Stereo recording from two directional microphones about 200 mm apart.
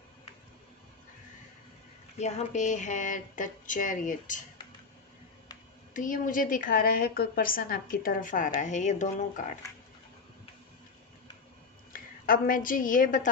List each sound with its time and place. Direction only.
2.1 s speech: 35° left (ahead or behind)
5.9 s a woman's voice: 45° left (ahead or behind)
11.9 s a woman's voice: 45° left (ahead or behind)